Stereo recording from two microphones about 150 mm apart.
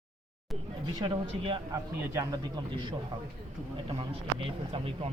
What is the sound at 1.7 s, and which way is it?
A man's voice, 25° right (ahead or behind).